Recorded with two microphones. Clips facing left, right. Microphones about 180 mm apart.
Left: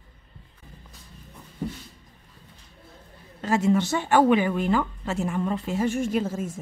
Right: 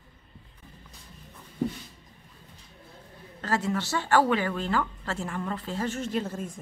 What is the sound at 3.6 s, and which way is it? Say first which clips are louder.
Speech: left 7 dB; 20° left (ahead or behind).